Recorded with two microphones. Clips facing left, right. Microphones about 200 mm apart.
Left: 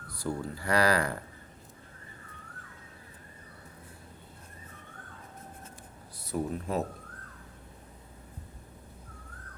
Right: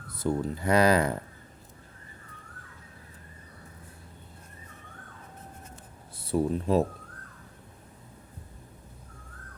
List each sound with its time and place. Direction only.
0.1 s speech: 20° right (ahead or behind)
6.1 s speech: 30° right (ahead or behind)